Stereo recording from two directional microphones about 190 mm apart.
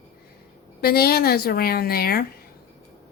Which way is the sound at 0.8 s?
55° left (ahead or behind).